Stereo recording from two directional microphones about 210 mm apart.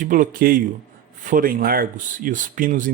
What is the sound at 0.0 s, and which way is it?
Speech, 40° right (ahead or behind).